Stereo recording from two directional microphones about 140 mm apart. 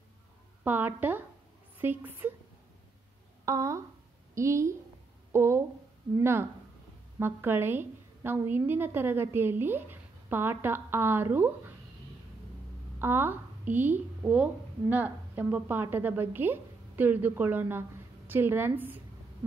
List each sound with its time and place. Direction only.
0.7 s a woman's voice: 15° right (ahead or behind)
3.4 s a woman's voice: 20° right (ahead or behind)
13.0 s a woman's voice: 15° right (ahead or behind)